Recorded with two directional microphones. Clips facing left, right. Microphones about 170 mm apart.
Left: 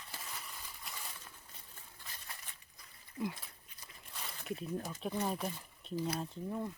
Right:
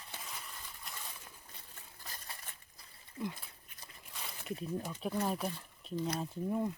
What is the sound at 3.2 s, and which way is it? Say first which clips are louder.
Speech: left 1 dB; 5° left (ahead or behind).